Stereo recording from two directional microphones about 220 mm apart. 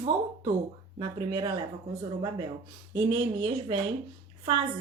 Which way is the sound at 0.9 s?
20° right (ahead or behind).